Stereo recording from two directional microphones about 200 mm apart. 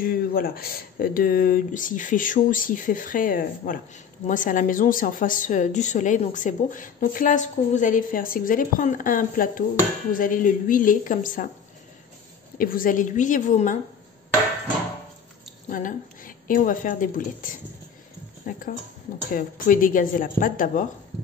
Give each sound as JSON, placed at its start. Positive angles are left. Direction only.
{"t": 0.0, "sound": "a woman's voice", "side_deg": 45}
{"t": 12.5, "sound": "a woman's voice", "side_deg": 45}
{"t": 15.7, "sound": "a woman's voice", "side_deg": 45}